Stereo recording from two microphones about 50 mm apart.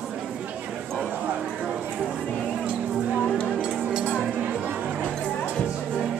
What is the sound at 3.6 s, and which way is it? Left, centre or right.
Music, centre.